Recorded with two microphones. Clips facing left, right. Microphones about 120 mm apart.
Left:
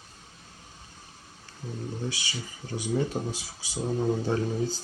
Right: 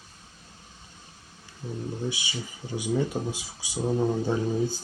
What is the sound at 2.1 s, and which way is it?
Speech, 15° right (ahead or behind).